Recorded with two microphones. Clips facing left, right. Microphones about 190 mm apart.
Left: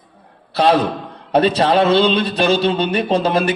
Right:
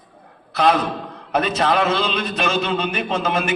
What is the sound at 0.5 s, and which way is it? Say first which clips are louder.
A man's voice: left 3 dB; 30° left (ahead or behind).